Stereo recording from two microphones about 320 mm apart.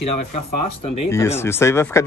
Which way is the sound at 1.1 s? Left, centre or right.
Centre.